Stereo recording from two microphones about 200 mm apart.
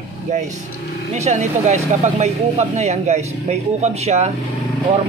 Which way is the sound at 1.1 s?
35° right (ahead or behind).